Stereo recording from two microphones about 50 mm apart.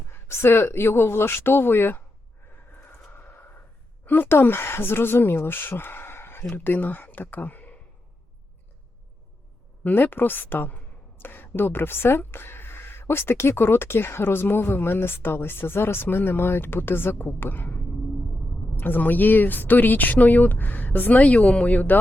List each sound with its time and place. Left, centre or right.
0.1 s speech: left
3.2 s a sound: left
4.0 s speech: left
6.7 s speech: left
9.8 s speech: left